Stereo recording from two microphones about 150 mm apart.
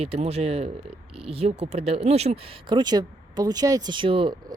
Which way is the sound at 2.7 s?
30° right (ahead or behind).